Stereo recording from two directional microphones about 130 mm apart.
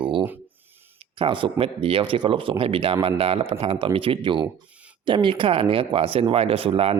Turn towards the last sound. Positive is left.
turn(degrees=-50)  # may be behind; listen again after turning